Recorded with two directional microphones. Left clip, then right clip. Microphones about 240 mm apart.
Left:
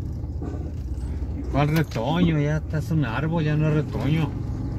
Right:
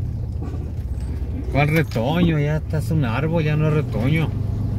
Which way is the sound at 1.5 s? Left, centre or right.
Right.